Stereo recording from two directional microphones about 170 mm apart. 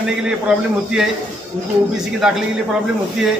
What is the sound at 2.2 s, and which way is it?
Speech, 5° right (ahead or behind).